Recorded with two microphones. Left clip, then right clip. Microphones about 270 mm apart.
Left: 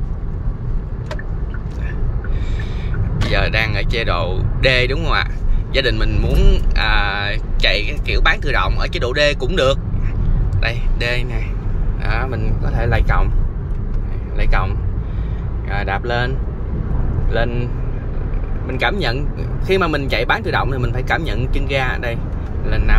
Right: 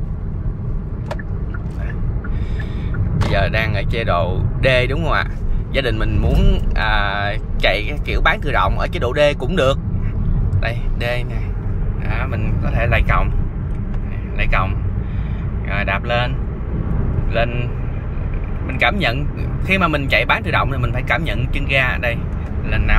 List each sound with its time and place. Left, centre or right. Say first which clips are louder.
3.3 s speech: left 1 dB; centre
12.6 s speech: right 3 dB; centre
14.4 s speech: right 3 dB; centre
15.7 s speech: right 1 dB; centre
18.7 s speech: right 2 dB; centre